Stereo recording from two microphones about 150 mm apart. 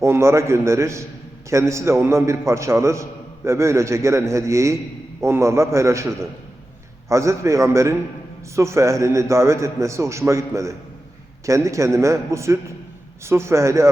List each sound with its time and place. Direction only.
0.0 s a man's voice: 20° right (ahead or behind)
7.1 s a man's voice: 20° right (ahead or behind)